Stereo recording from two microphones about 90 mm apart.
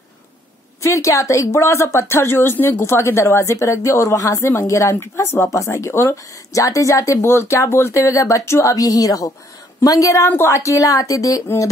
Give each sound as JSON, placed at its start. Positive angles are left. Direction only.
{"t": 0.8, "sound": "speech", "side_deg": 35}